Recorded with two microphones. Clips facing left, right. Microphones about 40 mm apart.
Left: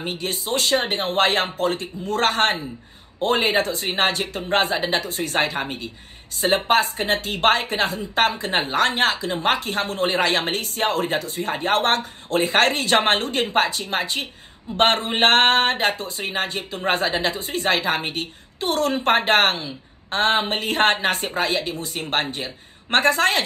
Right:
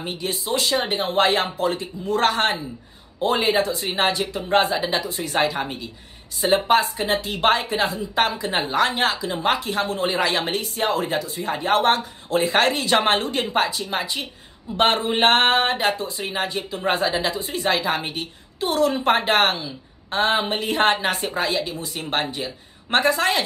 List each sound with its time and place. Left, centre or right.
0.2 s speech: left
8.5 s speech: left
8.7 s speech: left